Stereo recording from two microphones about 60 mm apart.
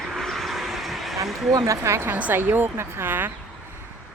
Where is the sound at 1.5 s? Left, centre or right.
Right.